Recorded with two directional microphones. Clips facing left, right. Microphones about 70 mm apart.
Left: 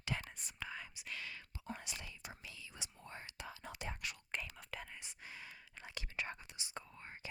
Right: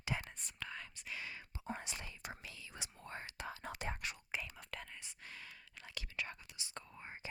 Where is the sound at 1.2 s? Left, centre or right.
Right.